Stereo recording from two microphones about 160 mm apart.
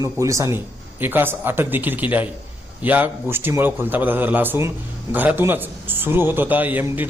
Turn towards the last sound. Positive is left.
turn(degrees=-10)  # may be behind; listen again after turning